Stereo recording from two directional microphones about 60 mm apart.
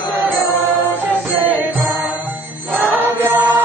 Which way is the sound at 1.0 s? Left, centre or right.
Right.